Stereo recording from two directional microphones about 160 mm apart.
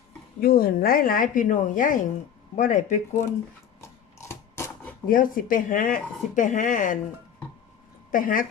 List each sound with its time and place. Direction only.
0.3 s speech: 70° left (ahead or behind); by 3.2 s 50° left (ahead or behind)
3.8 s a sound: 15° left (ahead or behind)
5.0 s speech: 60° left (ahead or behind)
8.1 s speech: 60° left (ahead or behind)